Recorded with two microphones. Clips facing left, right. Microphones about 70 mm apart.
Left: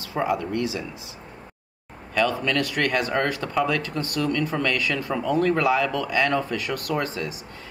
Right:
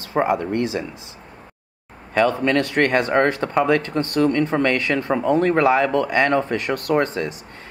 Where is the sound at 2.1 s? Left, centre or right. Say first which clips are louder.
Right 5 dB; right.